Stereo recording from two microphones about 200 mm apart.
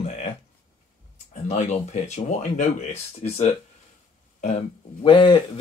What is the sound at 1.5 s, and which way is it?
Speech, 35° left (ahead or behind).